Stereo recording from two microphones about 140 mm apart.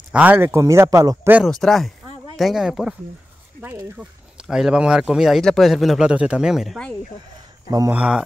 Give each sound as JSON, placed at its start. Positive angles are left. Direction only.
{"t": 0.1, "sound": "speech", "side_deg": -10}
{"t": 1.4, "sound": "speech", "side_deg": 0}
{"t": 7.9, "sound": "speech", "side_deg": -10}